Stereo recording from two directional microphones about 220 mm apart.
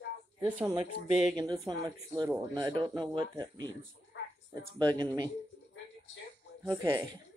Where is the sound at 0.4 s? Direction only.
5° right (ahead or behind).